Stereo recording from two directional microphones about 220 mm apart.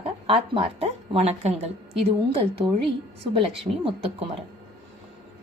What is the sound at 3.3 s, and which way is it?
Speech, 25° right (ahead or behind).